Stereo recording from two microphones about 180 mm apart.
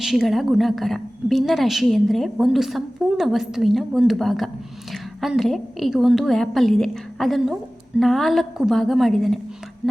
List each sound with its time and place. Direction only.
0.0 s a woman's voice: centre (ahead or behind)